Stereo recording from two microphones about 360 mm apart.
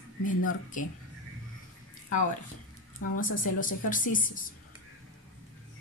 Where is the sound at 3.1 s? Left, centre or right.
Left.